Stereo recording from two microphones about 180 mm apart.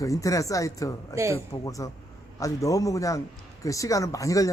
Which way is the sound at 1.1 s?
15° right (ahead or behind).